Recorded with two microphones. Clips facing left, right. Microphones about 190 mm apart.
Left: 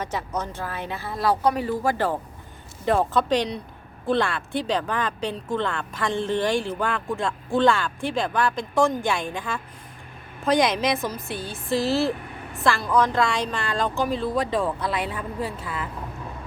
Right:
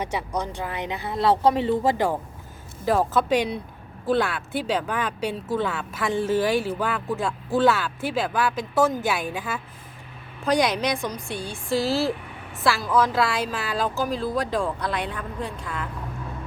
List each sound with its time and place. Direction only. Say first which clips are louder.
0.0 s speech: right 1 dB; 10° right (ahead or behind)
2.8 s speech: even; 5° right (ahead or behind)